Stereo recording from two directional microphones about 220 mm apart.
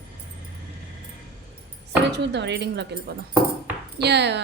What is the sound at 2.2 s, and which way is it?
A woman's voice, 50° right (ahead or behind).